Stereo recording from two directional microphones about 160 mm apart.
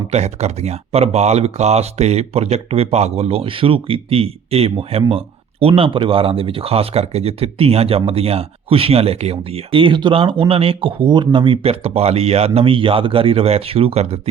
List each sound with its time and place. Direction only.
0.1 s speech: 45° right (ahead or behind)